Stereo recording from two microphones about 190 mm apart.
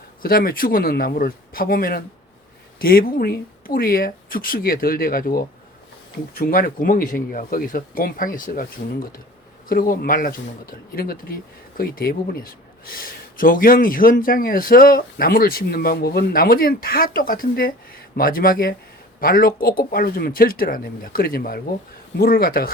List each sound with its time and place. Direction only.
0.2 s speech: 50° left (ahead or behind)